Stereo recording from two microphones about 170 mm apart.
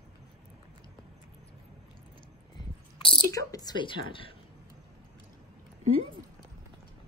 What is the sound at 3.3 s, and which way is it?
Speech, 20° left (ahead or behind).